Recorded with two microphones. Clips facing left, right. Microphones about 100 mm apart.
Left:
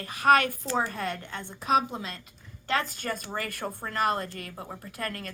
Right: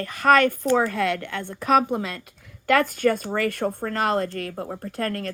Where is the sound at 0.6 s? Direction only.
65° right (ahead or behind).